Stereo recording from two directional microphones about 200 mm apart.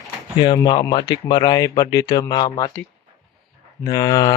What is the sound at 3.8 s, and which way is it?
Speech, 20° left (ahead or behind).